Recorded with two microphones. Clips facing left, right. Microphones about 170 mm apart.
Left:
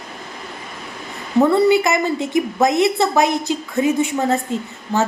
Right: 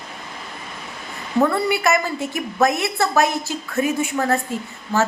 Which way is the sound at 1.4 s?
20° left (ahead or behind).